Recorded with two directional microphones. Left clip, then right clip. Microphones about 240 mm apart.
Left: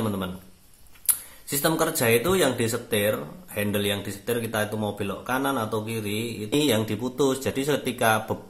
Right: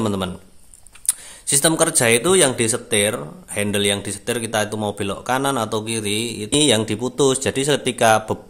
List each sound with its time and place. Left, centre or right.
0.0 s speech: right